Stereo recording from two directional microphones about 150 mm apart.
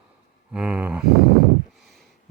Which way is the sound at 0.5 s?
5° right (ahead or behind).